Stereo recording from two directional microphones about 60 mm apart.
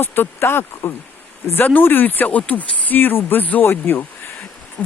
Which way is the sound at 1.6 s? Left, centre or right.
Left.